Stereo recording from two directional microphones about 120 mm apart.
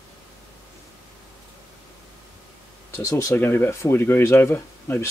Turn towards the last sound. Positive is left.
turn(degrees=20)  # may be behind; listen again after turning